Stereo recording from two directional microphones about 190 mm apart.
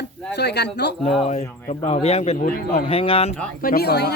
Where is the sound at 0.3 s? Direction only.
60° left (ahead or behind).